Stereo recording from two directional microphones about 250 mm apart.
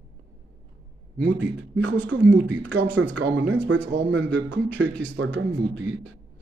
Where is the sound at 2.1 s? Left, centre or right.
Right.